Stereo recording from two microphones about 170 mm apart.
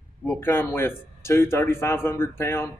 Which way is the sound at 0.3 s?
15° left (ahead or behind).